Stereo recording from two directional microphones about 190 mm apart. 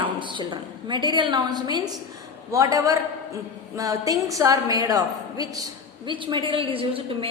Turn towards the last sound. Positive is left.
turn(degrees=-30)  # may be behind; listen again after turning